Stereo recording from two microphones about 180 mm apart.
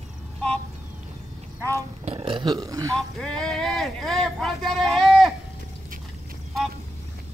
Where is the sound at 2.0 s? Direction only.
30° right (ahead or behind).